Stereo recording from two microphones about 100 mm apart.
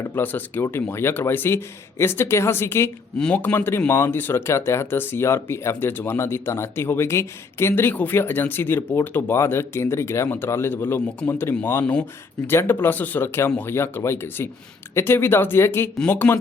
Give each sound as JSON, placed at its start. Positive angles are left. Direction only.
{"t": 0.0, "sound": "speech", "side_deg": 20}